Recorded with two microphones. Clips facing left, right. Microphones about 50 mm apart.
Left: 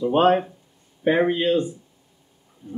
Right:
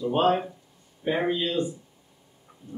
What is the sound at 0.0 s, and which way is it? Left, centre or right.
A man's voice, left.